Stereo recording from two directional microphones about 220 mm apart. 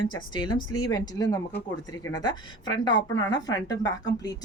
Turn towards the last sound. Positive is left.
turn(degrees=15)  # may be behind; listen again after turning